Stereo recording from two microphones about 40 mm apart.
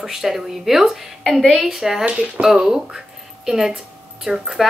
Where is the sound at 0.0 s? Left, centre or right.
Centre.